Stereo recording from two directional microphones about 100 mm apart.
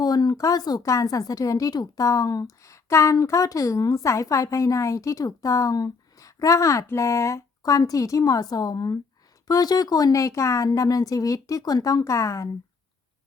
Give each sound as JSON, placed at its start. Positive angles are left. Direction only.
{"t": 0.0, "sound": "speech", "side_deg": 40}